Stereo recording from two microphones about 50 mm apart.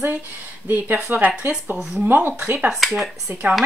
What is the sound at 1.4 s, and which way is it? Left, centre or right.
Speech, right.